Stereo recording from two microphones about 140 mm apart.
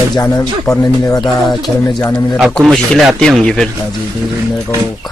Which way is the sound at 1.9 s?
25° left (ahead or behind).